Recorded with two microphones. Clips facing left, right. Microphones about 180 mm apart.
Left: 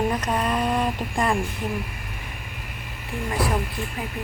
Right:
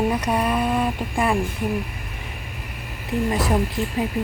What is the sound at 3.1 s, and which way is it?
Speech, 20° right (ahead or behind).